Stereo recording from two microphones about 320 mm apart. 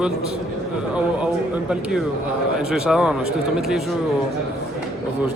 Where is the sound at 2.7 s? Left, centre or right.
Centre.